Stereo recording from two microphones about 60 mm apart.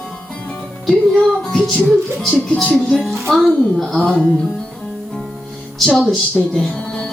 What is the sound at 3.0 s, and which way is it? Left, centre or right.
Speech, centre.